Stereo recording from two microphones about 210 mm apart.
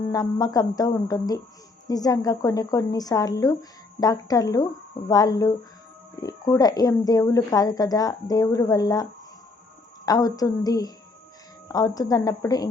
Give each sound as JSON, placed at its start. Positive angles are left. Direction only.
{"t": 0.1, "sound": "a woman's voice", "side_deg": 15}
{"t": 10.1, "sound": "a woman's voice", "side_deg": 15}